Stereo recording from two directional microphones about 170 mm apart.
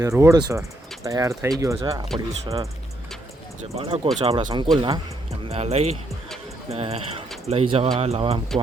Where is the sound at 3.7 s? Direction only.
35° right (ahead or behind).